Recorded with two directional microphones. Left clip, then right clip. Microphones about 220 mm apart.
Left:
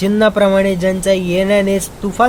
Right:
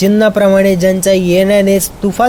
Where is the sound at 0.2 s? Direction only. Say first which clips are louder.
Right 1 dB; 15° right (ahead or behind).